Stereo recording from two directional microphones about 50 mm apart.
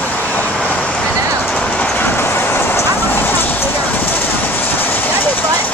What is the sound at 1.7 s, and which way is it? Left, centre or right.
Train, left.